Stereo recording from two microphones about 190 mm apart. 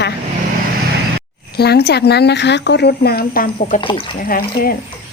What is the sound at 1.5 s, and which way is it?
A woman's voice, 55° left (ahead or behind).